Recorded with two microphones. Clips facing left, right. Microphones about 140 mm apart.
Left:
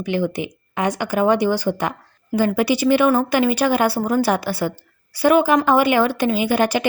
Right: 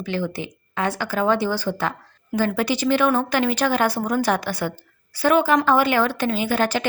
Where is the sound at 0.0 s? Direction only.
15° left (ahead or behind).